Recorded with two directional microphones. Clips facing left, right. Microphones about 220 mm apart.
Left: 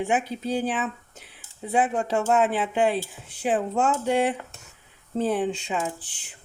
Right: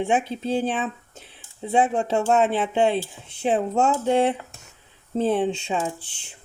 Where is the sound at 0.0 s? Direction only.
25° right (ahead or behind).